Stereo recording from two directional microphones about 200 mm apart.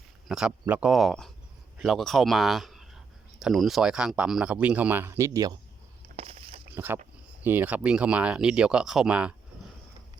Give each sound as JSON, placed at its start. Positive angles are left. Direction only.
{"t": 0.3, "sound": "speech", "side_deg": -5}
{"t": 6.1, "sound": "walk", "side_deg": -30}
{"t": 6.7, "sound": "speech", "side_deg": -10}